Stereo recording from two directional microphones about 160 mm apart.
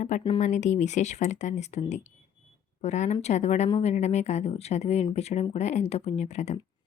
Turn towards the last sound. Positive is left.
turn(degrees=45)  # may be behind; listen again after turning